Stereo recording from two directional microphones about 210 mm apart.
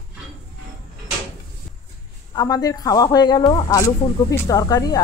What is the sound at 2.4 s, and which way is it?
Speech, 20° left (ahead or behind).